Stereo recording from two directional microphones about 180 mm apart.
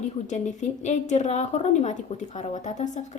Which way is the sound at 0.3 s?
40° left (ahead or behind).